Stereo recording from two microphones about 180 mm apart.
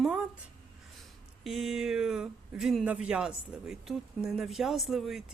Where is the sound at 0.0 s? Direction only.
5° right (ahead or behind).